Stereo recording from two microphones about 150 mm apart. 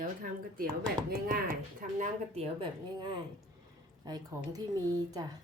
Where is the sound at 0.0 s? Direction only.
65° right (ahead or behind).